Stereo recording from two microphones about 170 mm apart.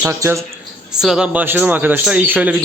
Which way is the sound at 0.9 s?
5° right (ahead or behind).